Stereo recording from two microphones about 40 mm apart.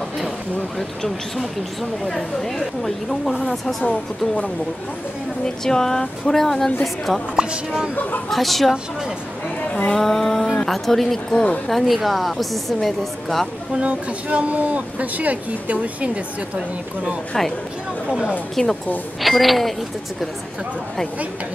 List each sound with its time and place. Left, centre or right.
0.7 s a woman's voice: centre
5.4 s speech: centre
7.3 s speech: centre
7.9 s speech: left
8.3 s a woman's voice: centre
9.7 s a sound: left
9.9 s a woman's voice: centre
13.7 s speech: right
18.6 s a woman's voice: centre